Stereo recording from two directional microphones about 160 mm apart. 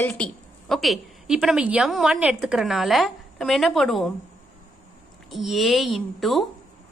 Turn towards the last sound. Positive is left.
turn(degrees=0)  # may be behind; listen again after turning